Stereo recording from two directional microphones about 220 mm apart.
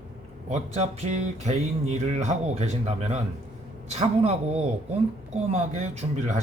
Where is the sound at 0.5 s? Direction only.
30° right (ahead or behind).